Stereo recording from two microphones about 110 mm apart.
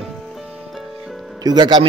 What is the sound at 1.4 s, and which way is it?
Speech, 40° right (ahead or behind).